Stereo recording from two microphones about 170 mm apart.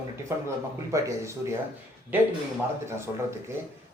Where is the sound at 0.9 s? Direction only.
15° right (ahead or behind).